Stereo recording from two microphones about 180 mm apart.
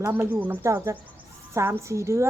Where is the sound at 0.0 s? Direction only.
10° right (ahead or behind).